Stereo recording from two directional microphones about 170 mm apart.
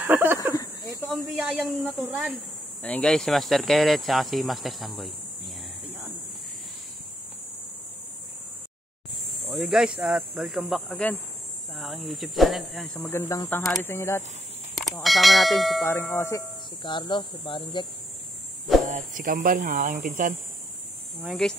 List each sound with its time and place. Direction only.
0.0 s a sound: 10° right (ahead or behind)
0.4 s a sound: 20° left (ahead or behind)
1.5 s speech: 5° right (ahead or behind)
2.8 s speech: 5° left (ahead or behind)
9.5 s speech: centre (ahead or behind)
13.6 s speech: centre (ahead or behind)
13.8 s speech: 15° left (ahead or behind)
14.8 s speech: centre (ahead or behind)
15.8 s speech: 15° left (ahead or behind)
16.8 s speech: 30° left (ahead or behind)
18.9 s speech: 50° right (ahead or behind)
21.2 s speech: centre (ahead or behind)